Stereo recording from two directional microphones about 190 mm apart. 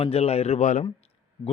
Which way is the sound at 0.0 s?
30° left (ahead or behind).